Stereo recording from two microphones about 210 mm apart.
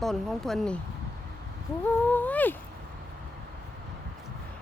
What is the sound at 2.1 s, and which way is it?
Speech, 10° left (ahead or behind).